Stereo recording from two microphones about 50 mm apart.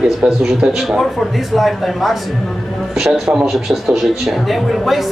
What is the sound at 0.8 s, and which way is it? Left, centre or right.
A man's voice, centre.